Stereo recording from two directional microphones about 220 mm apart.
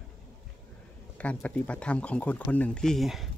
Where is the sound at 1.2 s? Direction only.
5° left (ahead or behind).